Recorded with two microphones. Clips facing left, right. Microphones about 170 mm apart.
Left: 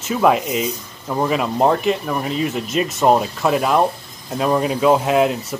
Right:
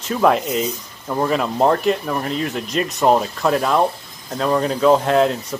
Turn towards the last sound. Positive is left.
turn(degrees=5)  # may be behind; listen again after turning